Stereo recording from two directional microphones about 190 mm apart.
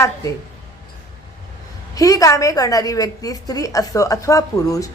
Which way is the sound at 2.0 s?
20° left (ahead or behind).